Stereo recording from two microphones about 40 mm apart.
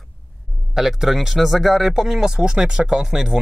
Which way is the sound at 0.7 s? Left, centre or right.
Centre.